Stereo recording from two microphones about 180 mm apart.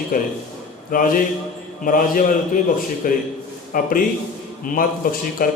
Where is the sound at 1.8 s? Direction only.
50° left (ahead or behind).